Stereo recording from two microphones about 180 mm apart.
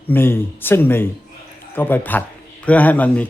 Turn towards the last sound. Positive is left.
turn(degrees=10)  # may be behind; listen again after turning